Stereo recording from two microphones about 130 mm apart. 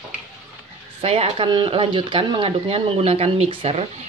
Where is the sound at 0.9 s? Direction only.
45° right (ahead or behind).